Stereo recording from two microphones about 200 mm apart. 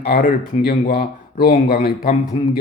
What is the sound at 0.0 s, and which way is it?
Speech, 45° left (ahead or behind).